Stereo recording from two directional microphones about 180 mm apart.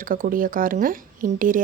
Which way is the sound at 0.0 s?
50° right (ahead or behind).